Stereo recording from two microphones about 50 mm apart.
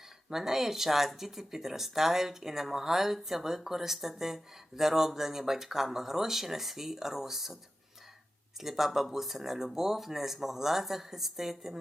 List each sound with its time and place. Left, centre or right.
0.3 s speech: centre
8.6 s speech: centre